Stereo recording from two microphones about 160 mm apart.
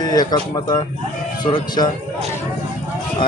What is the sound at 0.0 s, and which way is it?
Speech, 25° left (ahead or behind).